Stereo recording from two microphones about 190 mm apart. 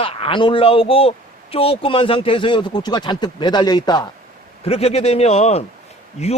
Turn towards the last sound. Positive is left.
turn(degrees=35)  # may be behind; listen again after turning